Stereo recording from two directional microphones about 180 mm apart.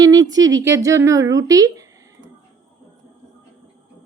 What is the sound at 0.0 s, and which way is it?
A woman's voice, 20° right (ahead or behind).